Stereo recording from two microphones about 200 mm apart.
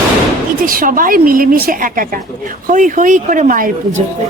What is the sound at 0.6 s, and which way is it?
A woman's voice, 45° right (ahead or behind).